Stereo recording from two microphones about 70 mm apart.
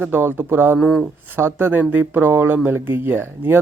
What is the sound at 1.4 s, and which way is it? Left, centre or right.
Speech, right.